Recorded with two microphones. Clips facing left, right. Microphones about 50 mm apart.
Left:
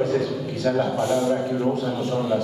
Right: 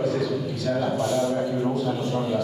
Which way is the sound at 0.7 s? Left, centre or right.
Left.